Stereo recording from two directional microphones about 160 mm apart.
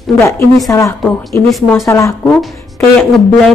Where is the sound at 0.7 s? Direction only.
20° left (ahead or behind).